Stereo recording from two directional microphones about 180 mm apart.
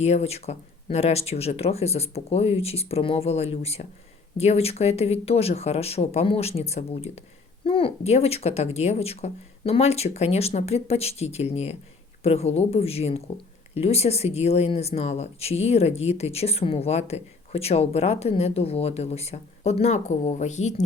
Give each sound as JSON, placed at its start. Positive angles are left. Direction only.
{"t": 0.0, "sound": "speech", "side_deg": 35}